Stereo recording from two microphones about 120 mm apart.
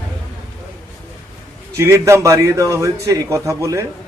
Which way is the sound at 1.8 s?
25° right (ahead or behind).